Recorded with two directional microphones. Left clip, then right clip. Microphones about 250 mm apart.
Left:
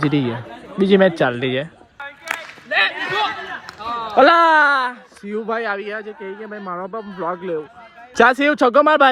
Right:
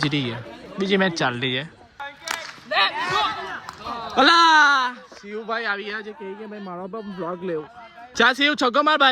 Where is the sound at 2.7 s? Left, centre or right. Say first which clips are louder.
Left 3 dB; right.